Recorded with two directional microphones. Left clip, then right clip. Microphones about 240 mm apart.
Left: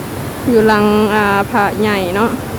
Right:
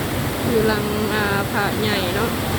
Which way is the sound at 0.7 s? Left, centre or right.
Left.